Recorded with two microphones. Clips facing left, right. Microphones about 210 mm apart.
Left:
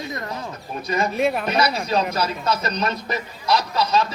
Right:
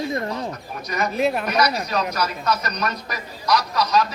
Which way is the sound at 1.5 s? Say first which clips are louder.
Left 1 dB; 25° left (ahead or behind).